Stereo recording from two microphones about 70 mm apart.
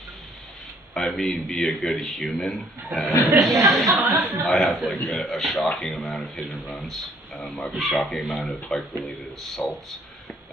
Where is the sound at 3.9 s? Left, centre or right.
Right.